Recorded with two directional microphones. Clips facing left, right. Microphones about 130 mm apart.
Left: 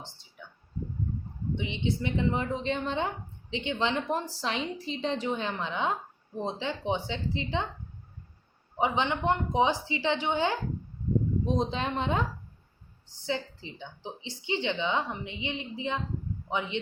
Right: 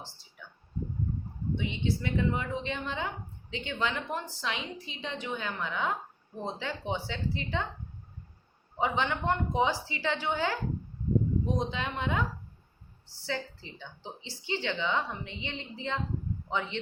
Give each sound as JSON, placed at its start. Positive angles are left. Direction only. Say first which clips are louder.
{"t": 0.4, "sound": "a sound", "louder": "left 2 dB", "side_deg": 20}
{"t": 1.5, "sound": "a woman's voice", "louder": "left 1 dB", "side_deg": 20}
{"t": 2.4, "sound": "speech", "louder": "left 4 dB", "side_deg": 35}
{"t": 3.5, "sound": "a woman's voice", "louder": "left 4 dB", "side_deg": 20}
{"t": 8.8, "sound": "a woman's voice", "louder": "left 2 dB", "side_deg": 20}
{"t": 13.2, "sound": "a woman's voice", "louder": "left 3 dB", "side_deg": 20}